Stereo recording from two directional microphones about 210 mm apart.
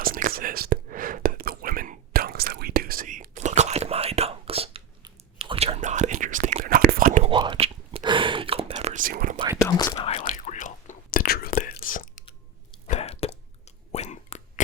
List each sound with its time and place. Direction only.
0.0 s whispering: 45° right (ahead or behind)
7.3 s whispering: 20° right (ahead or behind); by 9.4 s 40° right (ahead or behind)
9.6 s whispering: 20° left (ahead or behind); by 12.0 s 40° left (ahead or behind)
12.9 s a sound: 30° left (ahead or behind)